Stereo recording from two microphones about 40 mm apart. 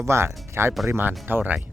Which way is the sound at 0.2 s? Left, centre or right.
Right.